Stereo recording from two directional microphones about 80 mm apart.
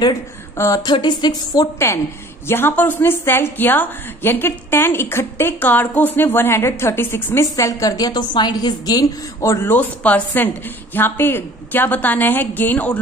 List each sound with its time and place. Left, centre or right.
0.8 s speech: left
2.4 s a woman's voice: left
7.5 s a woman's voice: left
9.7 s a woman's voice: left